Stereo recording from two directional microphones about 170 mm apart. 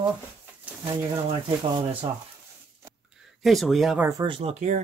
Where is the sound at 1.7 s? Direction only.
30° right (ahead or behind).